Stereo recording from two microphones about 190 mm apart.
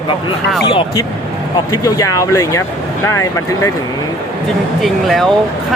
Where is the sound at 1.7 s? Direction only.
15° left (ahead or behind).